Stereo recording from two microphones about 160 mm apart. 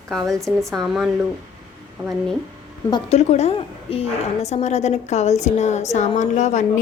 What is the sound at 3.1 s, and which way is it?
A woman's voice, 40° left (ahead or behind).